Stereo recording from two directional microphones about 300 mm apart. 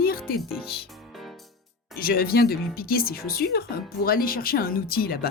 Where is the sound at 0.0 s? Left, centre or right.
Left.